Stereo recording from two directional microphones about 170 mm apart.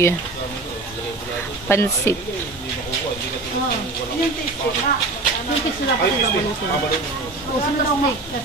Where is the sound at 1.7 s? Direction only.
15° left (ahead or behind).